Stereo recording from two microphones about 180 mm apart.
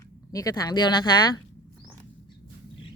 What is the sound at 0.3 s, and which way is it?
Speech, 20° left (ahead or behind).